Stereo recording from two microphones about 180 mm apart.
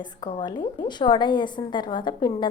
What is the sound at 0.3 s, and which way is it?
A woman's voice, 25° left (ahead or behind).